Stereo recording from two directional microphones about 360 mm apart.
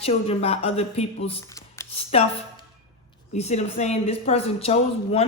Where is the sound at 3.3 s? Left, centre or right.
Centre.